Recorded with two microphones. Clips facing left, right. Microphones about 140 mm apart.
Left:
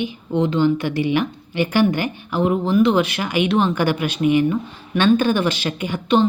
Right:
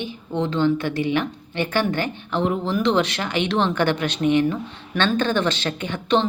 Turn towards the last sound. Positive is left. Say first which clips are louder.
# left 3 dB
turn(degrees=5)  # may be behind; listen again after turning